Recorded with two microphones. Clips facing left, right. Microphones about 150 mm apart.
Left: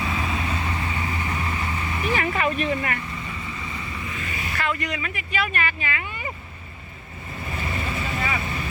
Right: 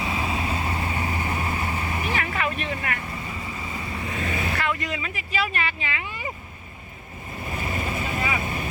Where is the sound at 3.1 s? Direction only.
30° right (ahead or behind).